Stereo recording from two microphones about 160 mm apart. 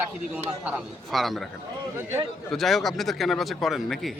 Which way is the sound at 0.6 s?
5° right (ahead or behind).